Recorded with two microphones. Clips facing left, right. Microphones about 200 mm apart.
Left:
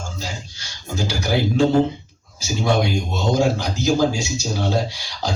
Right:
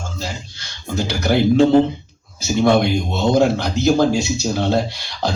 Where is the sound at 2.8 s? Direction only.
60° right (ahead or behind).